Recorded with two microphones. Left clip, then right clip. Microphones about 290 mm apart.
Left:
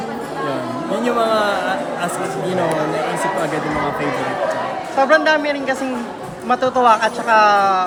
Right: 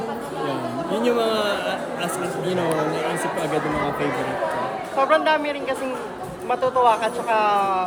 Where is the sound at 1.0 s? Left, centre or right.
Centre.